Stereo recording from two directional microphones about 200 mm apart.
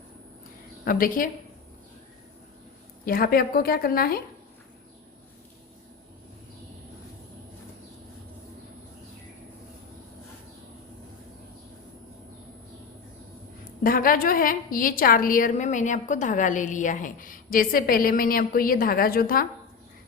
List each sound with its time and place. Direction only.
0.9 s a woman's voice: 45° left (ahead or behind)
3.0 s a woman's voice: 45° left (ahead or behind)
13.8 s a woman's voice: 45° left (ahead or behind)